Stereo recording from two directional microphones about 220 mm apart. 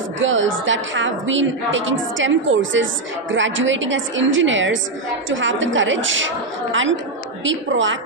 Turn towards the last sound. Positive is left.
turn(degrees=-60)  # may be behind; listen again after turning